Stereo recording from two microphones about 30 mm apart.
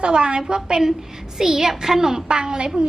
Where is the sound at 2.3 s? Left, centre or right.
Right.